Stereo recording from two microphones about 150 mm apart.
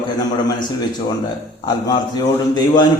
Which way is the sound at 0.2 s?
25° left (ahead or behind).